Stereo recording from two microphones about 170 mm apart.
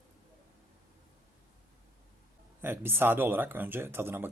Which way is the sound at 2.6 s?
15° right (ahead or behind).